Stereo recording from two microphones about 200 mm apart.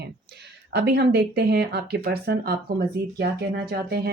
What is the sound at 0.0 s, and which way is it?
Speech, 55° right (ahead or behind).